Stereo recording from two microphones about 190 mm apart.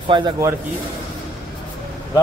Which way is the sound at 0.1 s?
20° right (ahead or behind).